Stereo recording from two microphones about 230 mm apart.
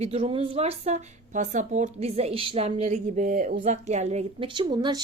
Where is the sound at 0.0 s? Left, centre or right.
Right.